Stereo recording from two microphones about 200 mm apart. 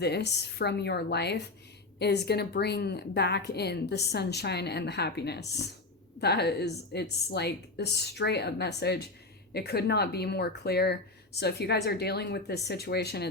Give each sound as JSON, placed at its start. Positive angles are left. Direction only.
{"t": 0.0, "sound": "a woman's voice", "side_deg": 55}